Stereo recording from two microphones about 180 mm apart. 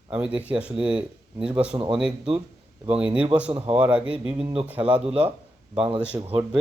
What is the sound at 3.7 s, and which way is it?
Speech, 5° right (ahead or behind).